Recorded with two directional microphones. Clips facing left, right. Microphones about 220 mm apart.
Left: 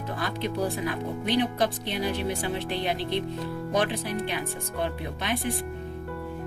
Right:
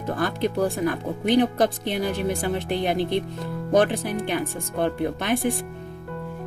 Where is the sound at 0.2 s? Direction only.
50° right (ahead or behind).